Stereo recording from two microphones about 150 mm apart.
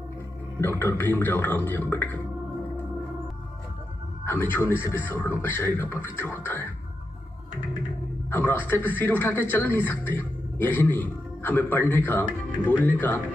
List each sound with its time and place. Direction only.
0.6 s a man's voice: 15° left (ahead or behind)
4.2 s a man's voice: 15° left (ahead or behind)
8.3 s a man's voice: 15° left (ahead or behind)